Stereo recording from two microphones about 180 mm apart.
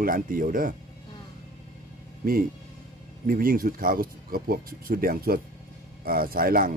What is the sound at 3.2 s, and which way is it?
Speech, 55° right (ahead or behind).